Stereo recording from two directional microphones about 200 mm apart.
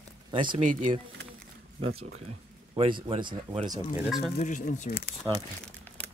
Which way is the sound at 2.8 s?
25° right (ahead or behind).